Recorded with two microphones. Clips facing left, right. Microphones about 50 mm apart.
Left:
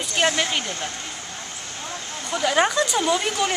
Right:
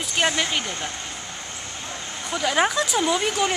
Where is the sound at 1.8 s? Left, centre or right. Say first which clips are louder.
Left 2 dB; centre.